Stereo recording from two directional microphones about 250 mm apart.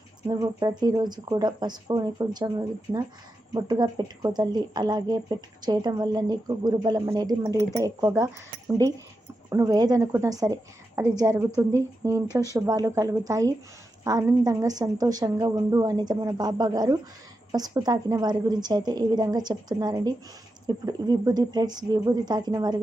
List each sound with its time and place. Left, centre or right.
0.3 s speech: centre